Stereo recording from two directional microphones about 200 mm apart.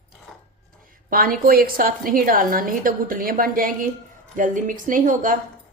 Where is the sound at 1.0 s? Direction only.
45° right (ahead or behind).